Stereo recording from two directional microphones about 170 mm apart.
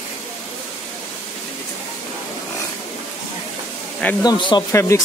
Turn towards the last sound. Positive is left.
turn(degrees=15)  # may be behind; listen again after turning